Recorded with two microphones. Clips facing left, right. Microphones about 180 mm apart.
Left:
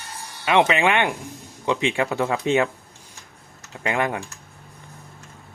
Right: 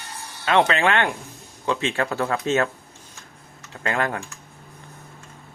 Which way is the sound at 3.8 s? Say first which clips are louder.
Left 1 dB; 15° left (ahead or behind).